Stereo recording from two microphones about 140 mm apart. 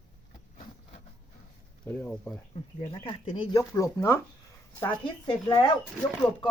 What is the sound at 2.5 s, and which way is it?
Speech, 40° left (ahead or behind).